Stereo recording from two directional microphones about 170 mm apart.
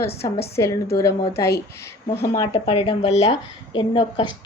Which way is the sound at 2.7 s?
35° left (ahead or behind).